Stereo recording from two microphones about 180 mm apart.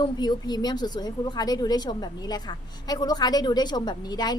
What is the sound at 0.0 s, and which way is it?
A woman's voice, 25° left (ahead or behind).